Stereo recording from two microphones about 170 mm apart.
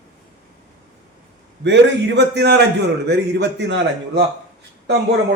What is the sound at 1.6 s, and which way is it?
A man's voice, 90° right.